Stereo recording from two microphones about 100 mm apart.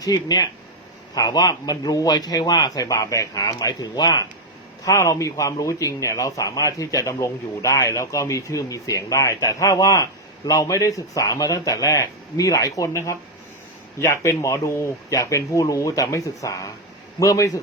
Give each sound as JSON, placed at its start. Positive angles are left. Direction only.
{"t": 0.0, "sound": "speech", "side_deg": 40}